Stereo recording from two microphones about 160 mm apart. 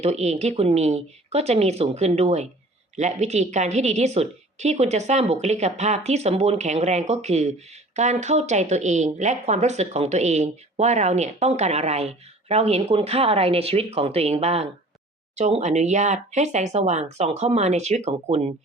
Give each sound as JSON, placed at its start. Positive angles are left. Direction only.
{"t": 0.0, "sound": "speech", "side_deg": -45}